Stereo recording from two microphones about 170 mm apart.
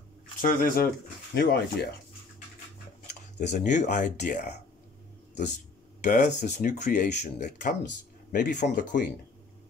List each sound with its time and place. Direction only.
0.4 s speech: 55° left (ahead or behind)
1.3 s speech: 70° left (ahead or behind)
3.1 s speech: 45° left (ahead or behind)
6.0 s speech: 50° left (ahead or behind)